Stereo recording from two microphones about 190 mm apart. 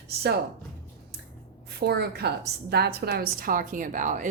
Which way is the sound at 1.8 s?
55° right (ahead or behind).